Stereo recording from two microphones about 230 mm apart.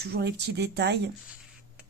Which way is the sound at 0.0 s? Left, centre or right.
Right.